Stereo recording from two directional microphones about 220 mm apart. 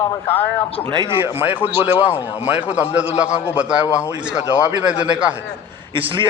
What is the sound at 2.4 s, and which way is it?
Speech, 30° left (ahead or behind).